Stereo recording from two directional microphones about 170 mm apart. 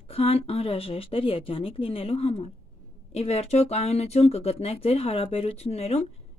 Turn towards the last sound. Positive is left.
turn(degrees=40)  # may be behind; listen again after turning